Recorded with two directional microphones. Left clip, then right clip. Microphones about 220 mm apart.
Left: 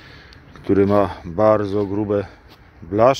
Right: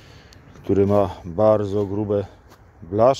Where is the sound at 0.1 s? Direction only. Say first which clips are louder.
Left 4 dB; 5° right (ahead or behind).